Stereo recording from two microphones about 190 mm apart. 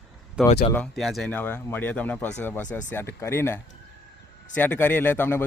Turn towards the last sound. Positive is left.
turn(degrees=10)  # may be behind; listen again after turning